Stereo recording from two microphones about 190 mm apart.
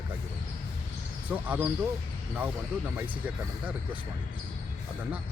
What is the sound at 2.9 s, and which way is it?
Speech, 10° right (ahead or behind).